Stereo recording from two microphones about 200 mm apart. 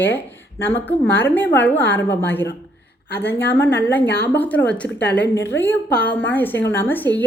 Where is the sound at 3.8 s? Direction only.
10° left (ahead or behind).